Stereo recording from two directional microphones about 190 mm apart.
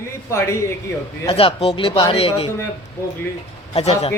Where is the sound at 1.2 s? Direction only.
30° left (ahead or behind).